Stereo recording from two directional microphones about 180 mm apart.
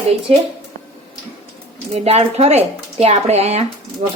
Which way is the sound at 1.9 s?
35° right (ahead or behind).